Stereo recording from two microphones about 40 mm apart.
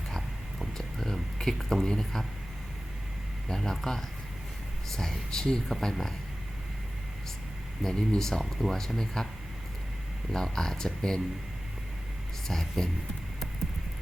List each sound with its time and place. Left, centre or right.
0.7 s a sound: centre
3.5 s speech: centre
5.6 s speech: centre
7.9 s speech: centre
8.5 s speech: centre
8.8 s speech: centre
10.3 s speech: centre
12.5 s speech: centre